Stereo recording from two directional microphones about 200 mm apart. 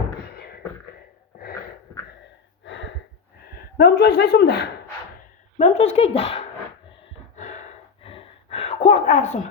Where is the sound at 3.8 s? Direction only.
55° left (ahead or behind).